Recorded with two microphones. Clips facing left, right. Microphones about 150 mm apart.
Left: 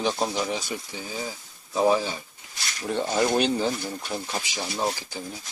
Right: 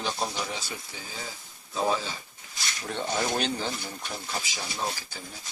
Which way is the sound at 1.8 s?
15° left (ahead or behind).